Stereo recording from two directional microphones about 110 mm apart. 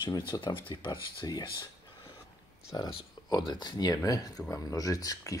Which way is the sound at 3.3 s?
40° left (ahead or behind).